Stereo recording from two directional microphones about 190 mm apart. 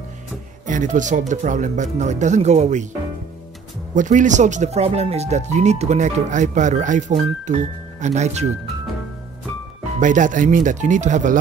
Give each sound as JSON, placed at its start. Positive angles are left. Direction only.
{"t": 0.7, "sound": "speech", "side_deg": -40}
{"t": 3.9, "sound": "speech", "side_deg": -40}
{"t": 9.9, "sound": "speech", "side_deg": -40}